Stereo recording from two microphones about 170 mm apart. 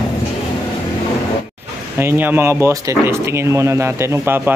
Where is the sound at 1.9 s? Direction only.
15° right (ahead or behind).